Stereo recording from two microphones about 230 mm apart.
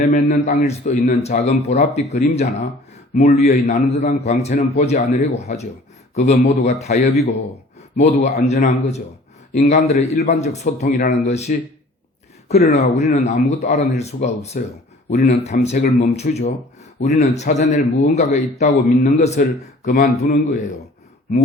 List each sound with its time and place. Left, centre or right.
0.0 s a man's voice: left